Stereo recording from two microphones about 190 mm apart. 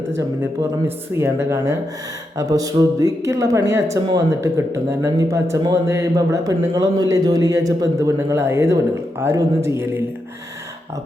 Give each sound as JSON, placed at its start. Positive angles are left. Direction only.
{"t": 0.1, "sound": "speech", "side_deg": -15}